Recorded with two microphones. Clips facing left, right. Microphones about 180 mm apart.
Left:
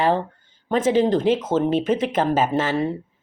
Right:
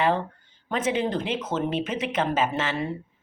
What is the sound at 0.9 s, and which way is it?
Speech, 40° left (ahead or behind).